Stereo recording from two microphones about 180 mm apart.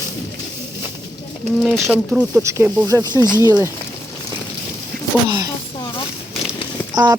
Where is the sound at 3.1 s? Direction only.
15° left (ahead or behind).